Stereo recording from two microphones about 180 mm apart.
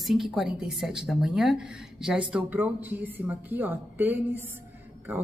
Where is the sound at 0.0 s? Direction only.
Centre (ahead or behind).